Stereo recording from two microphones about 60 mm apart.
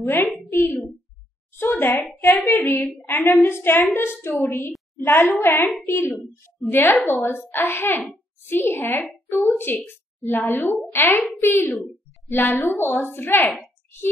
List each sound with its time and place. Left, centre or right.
0.0 s a woman's voice: left
0.5 s a sound: left
1.6 s a child's voice: left
5.9 s a woman's voice: left